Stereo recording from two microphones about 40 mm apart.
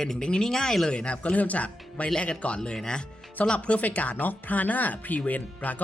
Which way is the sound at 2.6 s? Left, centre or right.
Centre.